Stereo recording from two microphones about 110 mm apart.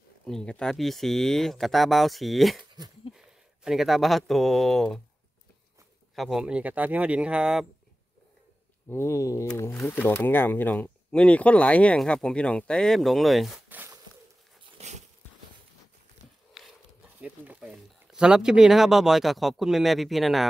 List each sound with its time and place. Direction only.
0.3 s speech: 5° left (ahead or behind)
6.1 s speech: centre (ahead or behind)
8.8 s mantra: 25° left (ahead or behind)
9.8 s speech: 20° left (ahead or behind); by 13.6 s centre (ahead or behind)
13.7 s a sound: 15° right (ahead or behind)
14.8 s a sound: 90° right
16.6 s dog: centre (ahead or behind)
17.2 s speech: 10° right (ahead or behind)